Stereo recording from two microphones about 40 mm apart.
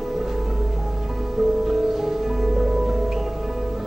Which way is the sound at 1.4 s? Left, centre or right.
Centre.